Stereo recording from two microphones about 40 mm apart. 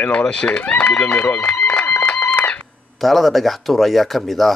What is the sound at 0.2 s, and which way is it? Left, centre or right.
Speech, left.